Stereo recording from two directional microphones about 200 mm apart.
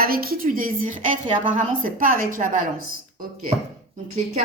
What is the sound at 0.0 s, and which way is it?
A woman's voice, 50° right (ahead or behind).